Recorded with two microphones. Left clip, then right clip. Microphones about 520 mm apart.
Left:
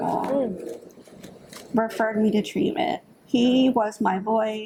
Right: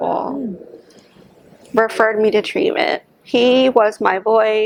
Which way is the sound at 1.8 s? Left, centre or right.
Right.